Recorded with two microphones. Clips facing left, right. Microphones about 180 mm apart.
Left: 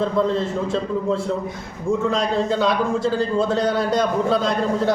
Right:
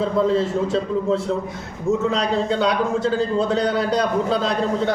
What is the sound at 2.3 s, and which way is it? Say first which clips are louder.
A man's voice: even; centre (ahead or behind).